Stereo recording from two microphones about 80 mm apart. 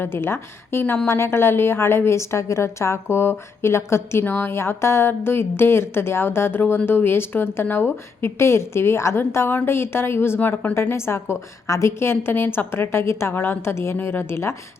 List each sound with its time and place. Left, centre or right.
0.0 s a woman's voice: left